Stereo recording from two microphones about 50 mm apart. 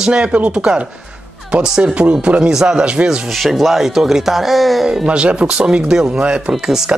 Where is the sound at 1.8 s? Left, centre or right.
Right.